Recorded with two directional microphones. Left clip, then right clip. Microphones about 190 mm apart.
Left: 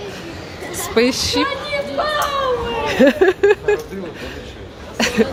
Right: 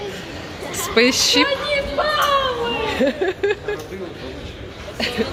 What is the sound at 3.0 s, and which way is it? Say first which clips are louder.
Speech: left 10 dB; 30° left (ahead or behind).